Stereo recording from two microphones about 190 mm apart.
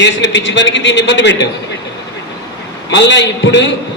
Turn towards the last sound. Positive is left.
turn(degrees=70)  # may be behind; listen again after turning